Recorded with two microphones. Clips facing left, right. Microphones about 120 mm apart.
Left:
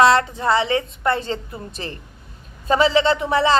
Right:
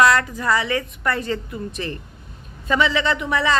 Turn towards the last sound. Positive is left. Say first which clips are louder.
# left 3 dB
turn(degrees=30)  # may be behind; listen again after turning